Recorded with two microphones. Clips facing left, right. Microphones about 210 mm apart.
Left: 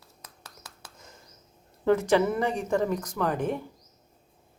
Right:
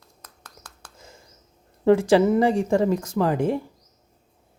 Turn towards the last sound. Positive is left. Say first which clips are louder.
# right 6 dB
turn(degrees=-30)  # may be behind; listen again after turning